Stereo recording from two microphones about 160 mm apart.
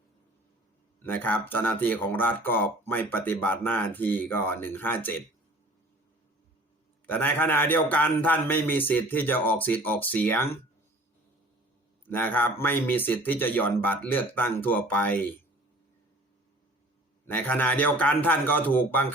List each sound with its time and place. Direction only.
1.0 s speech: 10° left (ahead or behind)
7.1 s speech: 10° left (ahead or behind)
12.0 s speech: 10° left (ahead or behind)
17.2 s speech: 10° left (ahead or behind)